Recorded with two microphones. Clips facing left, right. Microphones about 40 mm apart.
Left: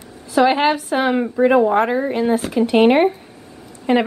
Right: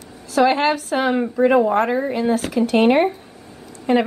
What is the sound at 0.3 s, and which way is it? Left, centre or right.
A woman's voice, centre.